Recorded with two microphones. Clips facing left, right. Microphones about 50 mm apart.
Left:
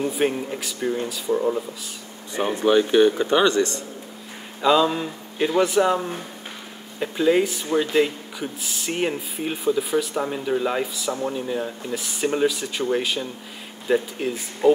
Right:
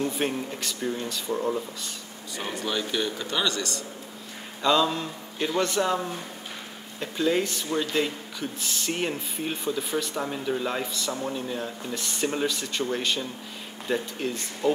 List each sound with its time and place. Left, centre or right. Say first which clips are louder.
0.0 s speech: left 5 dB; centre
0.7 s speech: left 6 dB; left
1.0 s speech: left 6 dB; centre
2.3 s speech: left 11 dB; left
4.6 s speech: left 4 dB; centre